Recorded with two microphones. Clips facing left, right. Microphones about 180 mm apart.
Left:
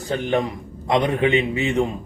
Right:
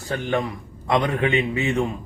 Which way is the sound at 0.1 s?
20° left (ahead or behind).